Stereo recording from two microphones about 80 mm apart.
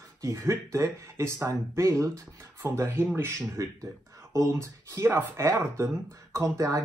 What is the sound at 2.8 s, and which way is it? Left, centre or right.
Speech, right.